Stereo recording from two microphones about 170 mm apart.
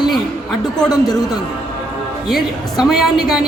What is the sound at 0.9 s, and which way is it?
Speech, 20° left (ahead or behind).